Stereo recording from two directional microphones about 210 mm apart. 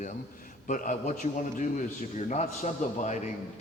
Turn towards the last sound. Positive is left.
turn(degrees=35)  # may be behind; listen again after turning